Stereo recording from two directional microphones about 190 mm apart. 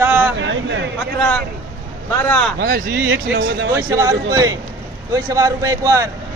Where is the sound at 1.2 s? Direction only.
10° left (ahead or behind).